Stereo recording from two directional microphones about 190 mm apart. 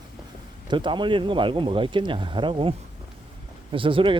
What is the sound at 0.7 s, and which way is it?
Speech, 25° right (ahead or behind).